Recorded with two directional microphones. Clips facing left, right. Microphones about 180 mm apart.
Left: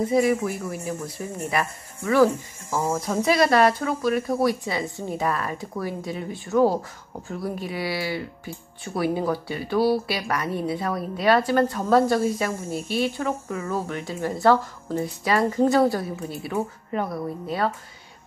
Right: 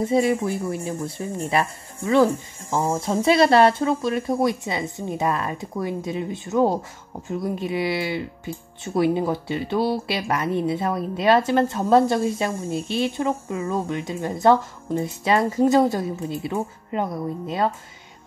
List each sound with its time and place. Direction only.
0.0 s speech: 25° right (ahead or behind)